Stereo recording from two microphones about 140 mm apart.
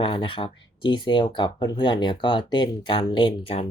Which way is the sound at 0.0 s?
35° left (ahead or behind).